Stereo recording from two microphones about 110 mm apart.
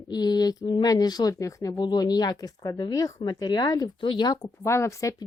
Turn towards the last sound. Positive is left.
turn(degrees=25)  # may be behind; listen again after turning